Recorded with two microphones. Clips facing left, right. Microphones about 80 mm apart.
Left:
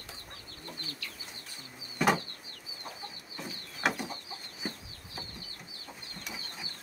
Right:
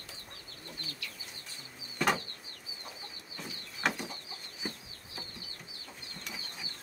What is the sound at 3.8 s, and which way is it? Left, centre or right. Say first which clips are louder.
Bird: left 2 dB; centre.